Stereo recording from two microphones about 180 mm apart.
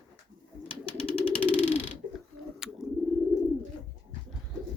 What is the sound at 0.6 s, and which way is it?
Bird, 30° left (ahead or behind).